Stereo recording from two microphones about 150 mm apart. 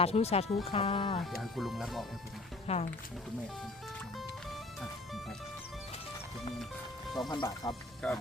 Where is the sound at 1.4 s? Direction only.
Centre (ahead or behind).